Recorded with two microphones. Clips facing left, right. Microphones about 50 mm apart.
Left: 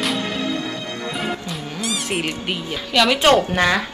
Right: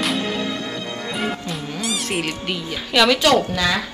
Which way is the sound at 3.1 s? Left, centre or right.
Left.